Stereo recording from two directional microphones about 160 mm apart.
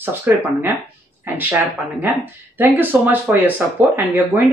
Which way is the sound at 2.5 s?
10° right (ahead or behind).